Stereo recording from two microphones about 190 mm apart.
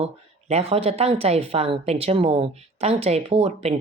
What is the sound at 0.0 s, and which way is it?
A woman's voice, 35° right (ahead or behind).